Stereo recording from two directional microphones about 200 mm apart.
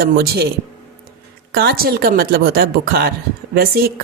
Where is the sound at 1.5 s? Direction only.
50° right (ahead or behind).